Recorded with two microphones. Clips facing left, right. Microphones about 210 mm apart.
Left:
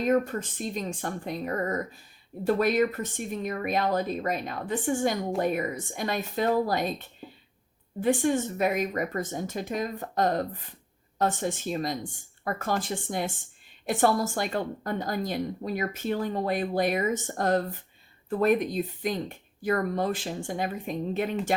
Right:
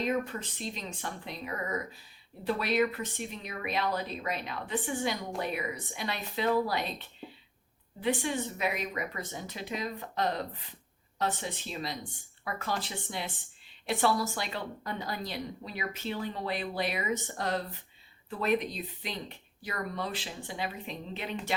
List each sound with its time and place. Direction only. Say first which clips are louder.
0.0 s a woman's voice: left 6 dB; 50° left (ahead or behind)